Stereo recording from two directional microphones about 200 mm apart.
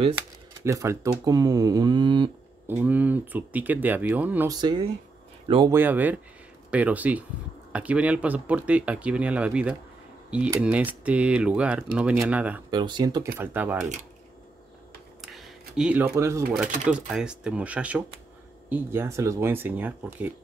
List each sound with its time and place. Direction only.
0.7 s speech: 15° right (ahead or behind)
2.7 s speech: 10° right (ahead or behind)
4.6 s speech: 20° right (ahead or behind)
5.7 s speech: 10° right (ahead or behind)
12.7 s speech: 20° right (ahead or behind)
15.2 s a sound: centre (ahead or behind)
16.2 s speech: 15° right (ahead or behind)